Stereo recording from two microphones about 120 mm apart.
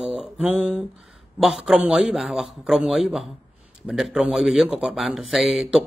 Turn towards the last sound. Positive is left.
turn(degrees=-5)  # may be behind; listen again after turning